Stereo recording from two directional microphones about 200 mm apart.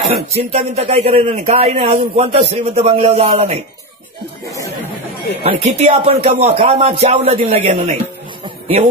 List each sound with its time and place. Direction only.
0.1 s speech: 30° right (ahead or behind)
5.4 s speech: 30° right (ahead or behind)